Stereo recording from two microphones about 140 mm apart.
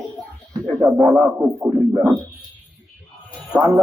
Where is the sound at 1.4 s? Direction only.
10° right (ahead or behind).